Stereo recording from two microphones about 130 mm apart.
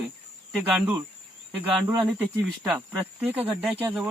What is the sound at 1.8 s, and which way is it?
Speech, 25° right (ahead or behind).